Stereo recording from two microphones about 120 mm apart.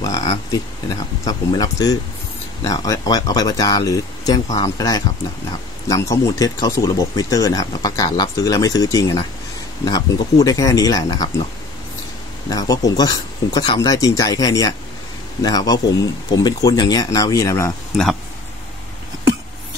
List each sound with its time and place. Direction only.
0.0 s a sound: 30° left (ahead or behind)
0.5 s speech: 30° left (ahead or behind)
12.4 s speech: 30° left (ahead or behind)